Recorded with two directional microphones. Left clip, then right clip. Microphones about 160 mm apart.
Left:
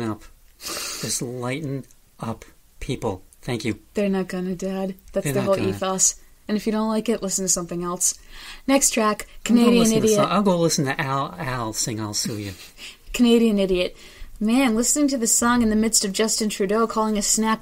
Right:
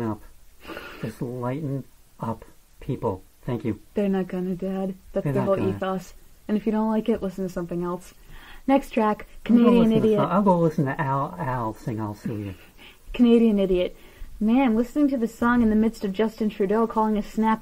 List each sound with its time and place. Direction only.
0.7 s speech: 15° left (ahead or behind)